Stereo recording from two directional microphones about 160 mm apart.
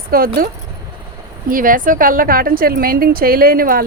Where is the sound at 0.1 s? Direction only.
65° right (ahead or behind).